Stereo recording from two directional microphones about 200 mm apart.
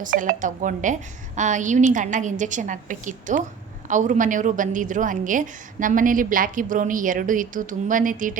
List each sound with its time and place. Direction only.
0.0 s a woman's voice: 40° right (ahead or behind)